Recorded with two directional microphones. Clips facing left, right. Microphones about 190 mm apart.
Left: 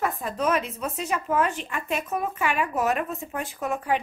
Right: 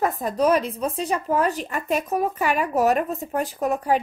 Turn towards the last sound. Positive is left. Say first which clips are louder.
# right 4 dB
turn(degrees=-40)  # may be behind; listen again after turning